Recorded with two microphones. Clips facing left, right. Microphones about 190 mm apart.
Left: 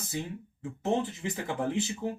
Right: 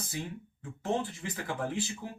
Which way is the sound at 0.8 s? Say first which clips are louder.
Left 3 dB; 20° left (ahead or behind).